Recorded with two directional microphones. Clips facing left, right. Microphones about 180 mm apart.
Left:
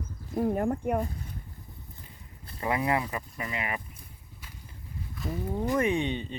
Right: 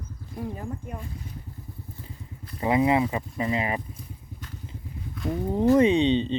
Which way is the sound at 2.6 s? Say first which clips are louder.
Right 6 dB; 20° right (ahead or behind).